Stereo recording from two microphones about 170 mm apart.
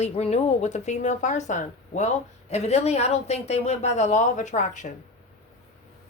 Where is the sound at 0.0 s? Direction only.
40° left (ahead or behind).